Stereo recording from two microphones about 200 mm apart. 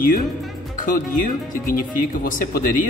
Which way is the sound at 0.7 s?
45° left (ahead or behind).